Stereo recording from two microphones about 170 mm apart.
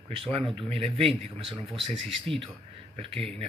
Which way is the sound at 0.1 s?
30° right (ahead or behind).